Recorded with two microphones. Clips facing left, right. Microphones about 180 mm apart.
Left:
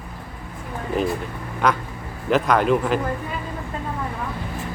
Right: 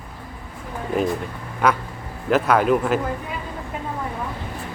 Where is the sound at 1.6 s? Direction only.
5° right (ahead or behind).